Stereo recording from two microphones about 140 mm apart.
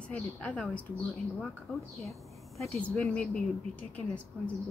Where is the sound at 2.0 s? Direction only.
Centre (ahead or behind).